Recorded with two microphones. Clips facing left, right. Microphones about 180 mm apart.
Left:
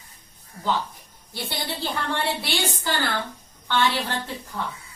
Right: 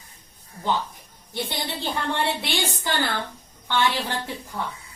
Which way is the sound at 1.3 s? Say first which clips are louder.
Right 2 dB; 20° right (ahead or behind).